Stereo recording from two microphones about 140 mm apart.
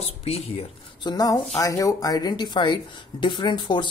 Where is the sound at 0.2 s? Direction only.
45° left (ahead or behind).